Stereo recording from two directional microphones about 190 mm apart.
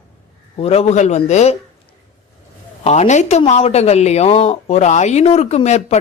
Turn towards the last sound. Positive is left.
turn(degrees=35)  # may be behind; listen again after turning